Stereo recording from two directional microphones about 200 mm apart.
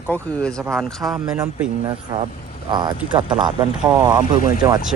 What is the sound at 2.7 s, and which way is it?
Speech, 20° right (ahead or behind).